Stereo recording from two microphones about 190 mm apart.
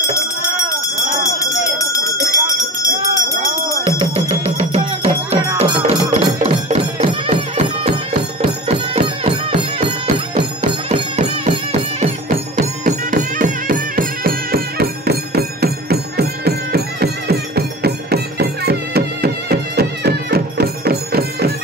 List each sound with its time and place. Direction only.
1.4 s jingle bell: 15° left (ahead or behind)
4.0 s music: 30° right (ahead or behind)
10.3 s music: 35° right (ahead or behind); by 21.5 s 55° right (ahead or behind)